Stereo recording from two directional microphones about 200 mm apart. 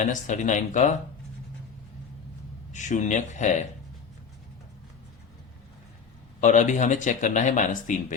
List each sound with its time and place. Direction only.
0.0 s speech: 40° left (ahead or behind)
2.7 s speech: 35° left (ahead or behind)
6.4 s speech: 40° left (ahead or behind)